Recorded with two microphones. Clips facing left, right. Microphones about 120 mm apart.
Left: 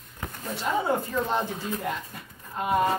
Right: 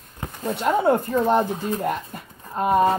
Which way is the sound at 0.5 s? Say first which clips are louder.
Right 7 dB; 60° right (ahead or behind).